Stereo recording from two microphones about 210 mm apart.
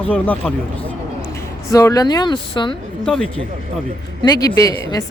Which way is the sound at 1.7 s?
15° left (ahead or behind).